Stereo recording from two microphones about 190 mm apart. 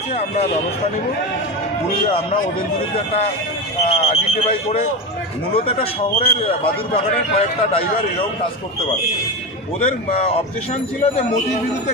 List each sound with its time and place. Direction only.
3.8 s a man's voice: 35° left (ahead or behind)
10.0 s speech: 30° left (ahead or behind)